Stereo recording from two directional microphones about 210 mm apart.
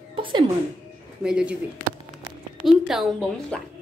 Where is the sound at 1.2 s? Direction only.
5° right (ahead or behind).